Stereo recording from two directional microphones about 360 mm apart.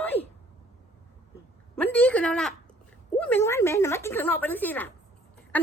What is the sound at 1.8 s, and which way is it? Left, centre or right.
Speech, centre.